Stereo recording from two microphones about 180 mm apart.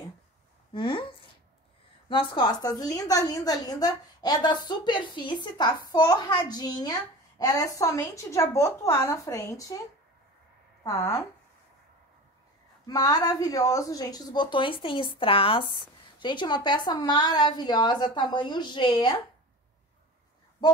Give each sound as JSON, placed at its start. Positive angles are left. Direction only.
{"t": 0.7, "sound": "a woman's voice", "side_deg": 30}
{"t": 10.8, "sound": "speech", "side_deg": 20}
{"t": 12.8, "sound": "a woman's voice", "side_deg": 20}